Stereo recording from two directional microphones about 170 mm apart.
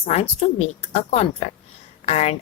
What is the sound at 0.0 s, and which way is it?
Speech, 40° left (ahead or behind).